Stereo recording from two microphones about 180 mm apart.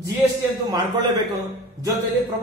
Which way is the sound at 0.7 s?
25° right (ahead or behind).